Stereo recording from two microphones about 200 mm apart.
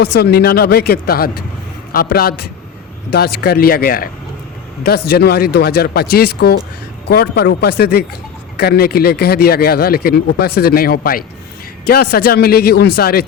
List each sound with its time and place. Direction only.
0.0 s a man's voice: 55° left (ahead or behind)